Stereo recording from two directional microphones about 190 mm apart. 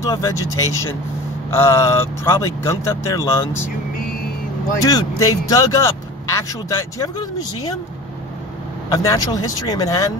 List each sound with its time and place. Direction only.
0.0 s speech: 15° left (ahead or behind)
4.7 s speech: 20° left (ahead or behind)
8.9 s speech: 20° left (ahead or behind)